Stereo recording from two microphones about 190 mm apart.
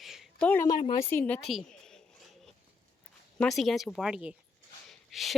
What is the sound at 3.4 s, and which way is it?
Speech, centre (ahead or behind).